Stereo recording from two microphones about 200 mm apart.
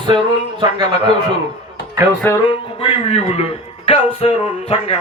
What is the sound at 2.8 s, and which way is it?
Speech, 30° left (ahead or behind).